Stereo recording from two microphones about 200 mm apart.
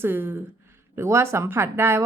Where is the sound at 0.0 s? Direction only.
10° right (ahead or behind).